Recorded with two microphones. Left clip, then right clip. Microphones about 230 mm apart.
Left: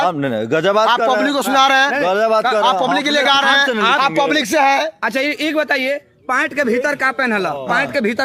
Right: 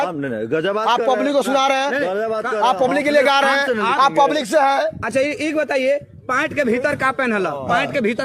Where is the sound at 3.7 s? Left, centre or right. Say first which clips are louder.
Left 3 dB; left.